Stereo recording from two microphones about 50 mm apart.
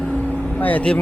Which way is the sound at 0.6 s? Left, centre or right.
Left.